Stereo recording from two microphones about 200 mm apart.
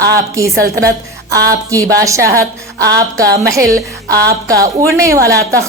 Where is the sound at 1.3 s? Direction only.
15° right (ahead or behind).